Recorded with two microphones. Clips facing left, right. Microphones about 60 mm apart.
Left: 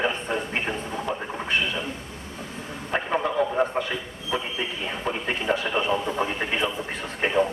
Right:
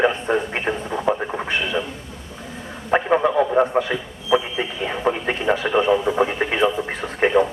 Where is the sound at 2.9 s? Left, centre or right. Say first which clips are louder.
Right 8 dB; right.